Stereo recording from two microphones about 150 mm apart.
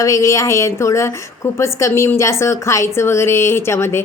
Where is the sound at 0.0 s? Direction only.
20° left (ahead or behind).